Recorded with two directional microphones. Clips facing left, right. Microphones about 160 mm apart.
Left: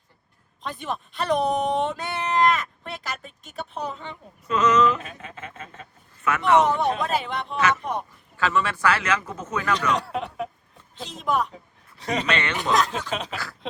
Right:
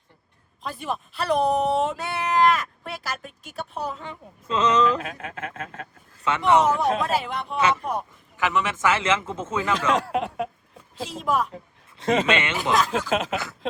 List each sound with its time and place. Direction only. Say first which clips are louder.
0.6 s speech: right 1 dB; 5° right (ahead or behind)
4.4 s a man's voice: left 1 dB; 30° right (ahead or behind)
5.0 s a man's voice: right 5 dB; 70° right (ahead or behind)
6.2 s a man's voice: even; 25° right (ahead or behind)
6.7 s speech: right 1 dB; centre (ahead or behind)
7.5 s a man's voice: right 1 dB; 25° right (ahead or behind)
10.9 s speech: right 1 dB; centre (ahead or behind)
11.9 s a man's voice: right 4 dB; 25° right (ahead or behind)
12.7 s speech: right 1 dB; centre (ahead or behind)
13.3 s a man's voice: right 5 dB; 20° right (ahead or behind)